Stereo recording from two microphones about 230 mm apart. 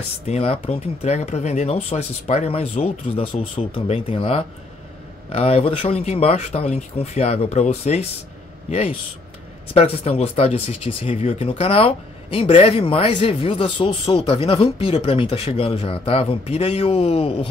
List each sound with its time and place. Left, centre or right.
0.3 s a man's voice: left